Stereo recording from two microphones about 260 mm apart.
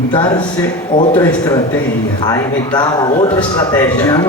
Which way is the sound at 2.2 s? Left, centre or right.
Centre.